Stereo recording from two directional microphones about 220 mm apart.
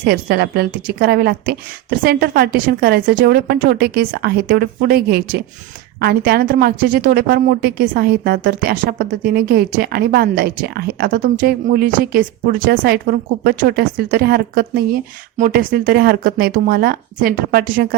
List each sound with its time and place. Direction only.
0.0 s a woman's voice: 45° right (ahead or behind)